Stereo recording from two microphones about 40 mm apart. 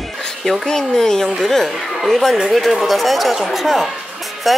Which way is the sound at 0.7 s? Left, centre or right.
Centre.